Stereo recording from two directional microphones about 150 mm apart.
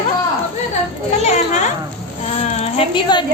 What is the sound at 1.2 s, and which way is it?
Children playing, 50° left (ahead or behind).